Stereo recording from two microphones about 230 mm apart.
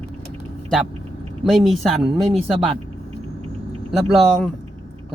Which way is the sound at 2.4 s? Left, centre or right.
Right.